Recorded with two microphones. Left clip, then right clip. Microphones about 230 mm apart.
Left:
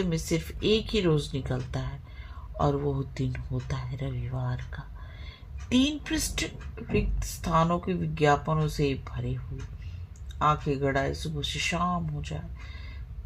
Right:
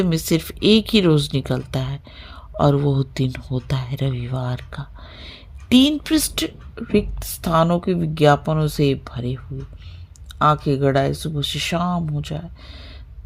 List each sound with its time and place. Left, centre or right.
0.0 s speech: right
10.3 s speech: right